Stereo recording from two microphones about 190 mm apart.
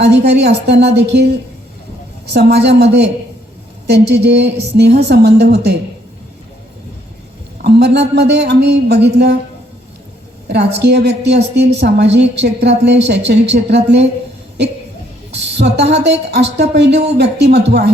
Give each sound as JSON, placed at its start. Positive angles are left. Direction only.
{"t": 0.0, "sound": "a woman's voice", "side_deg": -60}
{"t": 2.3, "sound": "a woman's voice", "side_deg": -60}
{"t": 7.6, "sound": "a woman's voice", "side_deg": -60}
{"t": 10.5, "sound": "a woman's voice", "side_deg": -60}
{"t": 15.3, "sound": "a woman's voice", "side_deg": -65}